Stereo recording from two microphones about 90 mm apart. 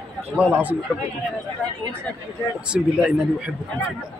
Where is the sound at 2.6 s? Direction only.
10° right (ahead or behind).